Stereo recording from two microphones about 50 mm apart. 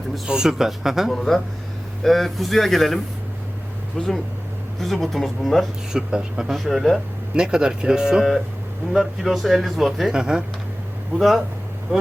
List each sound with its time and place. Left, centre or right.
0.3 s speech: centre
1.1 s speech: centre
5.9 s speech: centre
6.5 s speech: centre
7.3 s speech: centre
10.1 s speech: centre
11.2 s speech: centre